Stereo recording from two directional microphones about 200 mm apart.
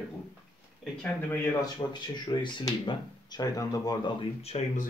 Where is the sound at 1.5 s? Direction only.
20° left (ahead or behind).